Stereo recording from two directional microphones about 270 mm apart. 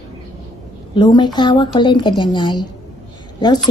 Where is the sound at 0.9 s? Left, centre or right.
Centre.